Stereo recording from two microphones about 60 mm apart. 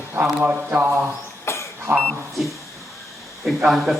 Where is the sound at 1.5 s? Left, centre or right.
Left.